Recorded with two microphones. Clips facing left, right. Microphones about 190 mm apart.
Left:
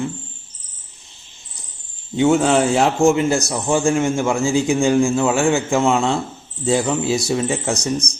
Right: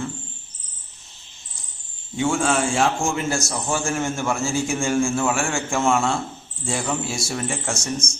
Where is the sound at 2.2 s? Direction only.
20° left (ahead or behind).